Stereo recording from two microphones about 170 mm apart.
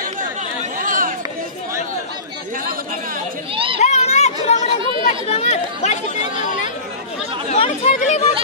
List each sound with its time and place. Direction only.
0.7 s chatter: 55° right (ahead or behind)
3.5 s children playing: 30° right (ahead or behind)
3.8 s a sound: 40° left (ahead or behind)
4.5 s chatter: 40° left (ahead or behind)